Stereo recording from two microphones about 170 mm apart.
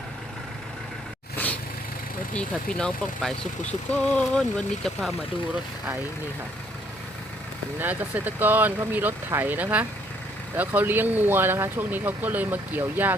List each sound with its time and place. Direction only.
2.3 s speech: 5° left (ahead or behind)
7.8 s speech: 10° right (ahead or behind)